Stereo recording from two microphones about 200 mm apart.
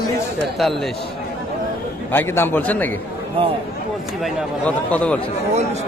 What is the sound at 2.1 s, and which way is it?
Speech, 10° left (ahead or behind).